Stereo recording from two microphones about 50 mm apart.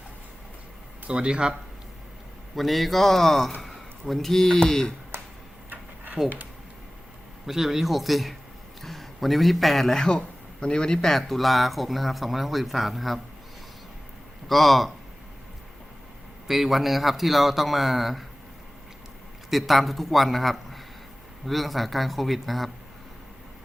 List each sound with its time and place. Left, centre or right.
1.0 s speech: centre
2.6 s a man's voice: centre
6.2 s speech: right
7.4 s a man's voice: centre
14.4 s a man's voice: centre
16.5 s a man's voice: centre
19.5 s a man's voice: centre